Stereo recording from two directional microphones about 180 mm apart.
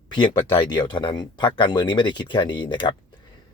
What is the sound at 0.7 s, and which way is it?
Speech, 25° left (ahead or behind).